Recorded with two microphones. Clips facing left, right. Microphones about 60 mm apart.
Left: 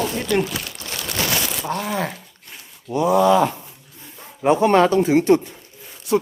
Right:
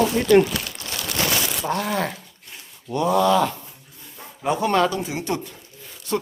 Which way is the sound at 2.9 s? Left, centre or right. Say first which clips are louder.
Left 3 dB; centre.